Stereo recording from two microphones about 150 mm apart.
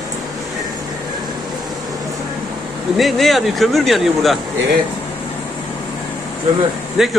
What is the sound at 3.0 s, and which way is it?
Speech, centre (ahead or behind).